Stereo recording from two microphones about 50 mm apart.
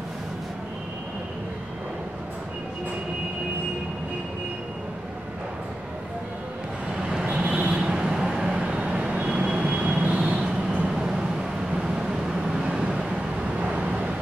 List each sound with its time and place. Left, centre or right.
7.0 s vehicle: centre